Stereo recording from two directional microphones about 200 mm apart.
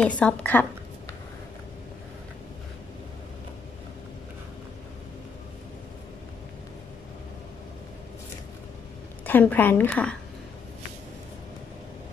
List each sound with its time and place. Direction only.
0.0 s a woman's voice: 5° left (ahead or behind)
9.2 s a woman's voice: 10° left (ahead or behind)